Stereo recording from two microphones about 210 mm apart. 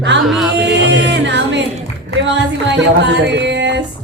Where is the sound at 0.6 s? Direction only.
55° right (ahead or behind).